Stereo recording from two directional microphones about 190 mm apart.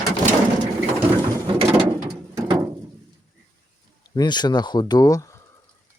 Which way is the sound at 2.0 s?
25° right (ahead or behind).